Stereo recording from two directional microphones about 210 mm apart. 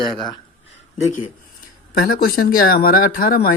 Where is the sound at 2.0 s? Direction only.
45° left (ahead or behind).